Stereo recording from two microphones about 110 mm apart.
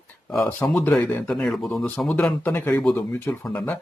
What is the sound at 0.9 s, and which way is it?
Speech, 5° left (ahead or behind).